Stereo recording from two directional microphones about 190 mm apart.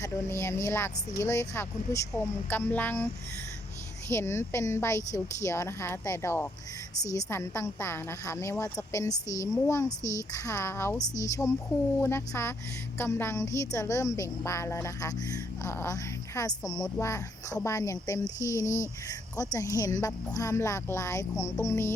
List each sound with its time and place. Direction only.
0.0 s speech: 15° left (ahead or behind)
4.1 s speech: 15° left (ahead or behind)